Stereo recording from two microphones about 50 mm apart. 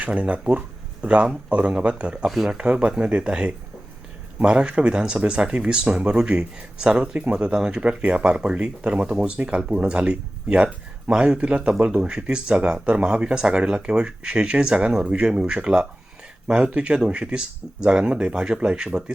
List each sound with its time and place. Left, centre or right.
0.0 s speech: right
2.2 s speech: centre
2.5 s speech: centre